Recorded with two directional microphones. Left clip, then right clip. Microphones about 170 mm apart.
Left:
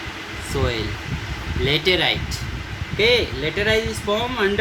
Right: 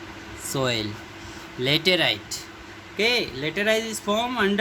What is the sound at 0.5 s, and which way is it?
Speech, 60° right (ahead or behind).